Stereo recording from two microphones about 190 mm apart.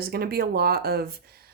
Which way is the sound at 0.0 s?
55° right (ahead or behind).